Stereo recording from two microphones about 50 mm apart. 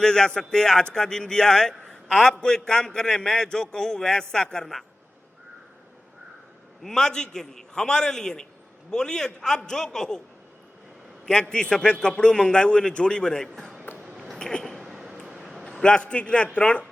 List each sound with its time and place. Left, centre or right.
0.0 s a man's voice: centre
6.8 s a man's voice: centre
11.3 s a man's voice: centre
13.9 s a sound: centre
14.3 s a sound: centre
15.6 s a man's voice: centre